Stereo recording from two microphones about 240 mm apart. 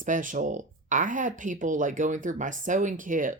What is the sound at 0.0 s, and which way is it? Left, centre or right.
Speech, right.